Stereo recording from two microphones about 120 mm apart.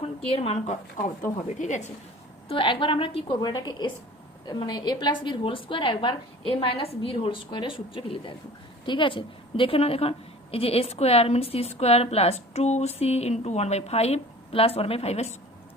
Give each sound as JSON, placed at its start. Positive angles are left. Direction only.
{"t": 0.0, "sound": "a woman's voice", "side_deg": 55}
{"t": 2.5, "sound": "a woman's voice", "side_deg": 45}
{"t": 3.3, "sound": "a woman's voice", "side_deg": 35}